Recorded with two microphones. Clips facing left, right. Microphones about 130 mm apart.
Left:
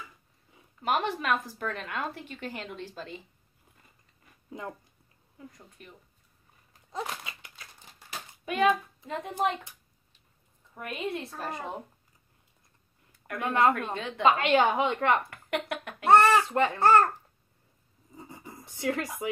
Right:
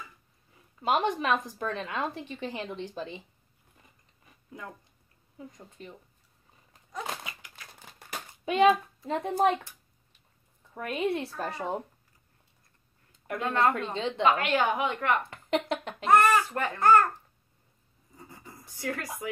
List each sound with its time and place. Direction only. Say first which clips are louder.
0.8 s a woman's voice: right 2 dB; 15° right (ahead or behind)
5.8 s speech: right 6 dB; 25° right (ahead or behind)
7.2 s crumpling: right 1 dB; 25° left (ahead or behind)
8.5 s a child's voice: right 3 dB; 30° right (ahead or behind)
10.7 s speech: right 5 dB; 30° right (ahead or behind)
13.4 s a child's voice: left 2 dB; 20° left (ahead or behind)
13.9 s speech: right 4 dB; 25° right (ahead or behind)
14.2 s a child's voice: left 3 dB; 25° left (ahead or behind)
15.2 s speech: right 3 dB; 25° right (ahead or behind)
16.1 s a child's voice: left 2 dB; 30° left (ahead or behind)
18.1 s a sound: left 3 dB; 20° left (ahead or behind)